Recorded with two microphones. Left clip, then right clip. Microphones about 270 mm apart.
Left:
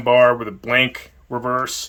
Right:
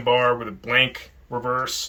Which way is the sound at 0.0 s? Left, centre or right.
Left.